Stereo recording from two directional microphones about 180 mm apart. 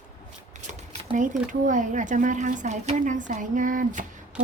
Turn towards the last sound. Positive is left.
turn(degrees=-45)  # may be behind; listen again after turning